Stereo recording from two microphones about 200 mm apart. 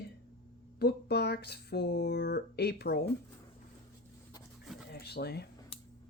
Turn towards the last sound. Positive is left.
turn(degrees=55)  # may be behind; listen again after turning